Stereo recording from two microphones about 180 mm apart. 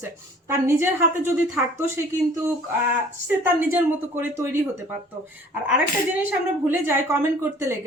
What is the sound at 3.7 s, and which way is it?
Speech, 15° right (ahead or behind).